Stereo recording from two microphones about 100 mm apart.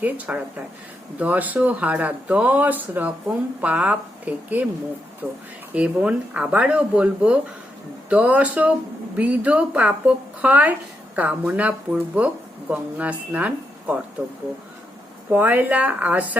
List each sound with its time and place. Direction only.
0.0 s speech: 15° right (ahead or behind)
5.7 s speech: 10° right (ahead or behind)
15.3 s speech: 15° right (ahead or behind)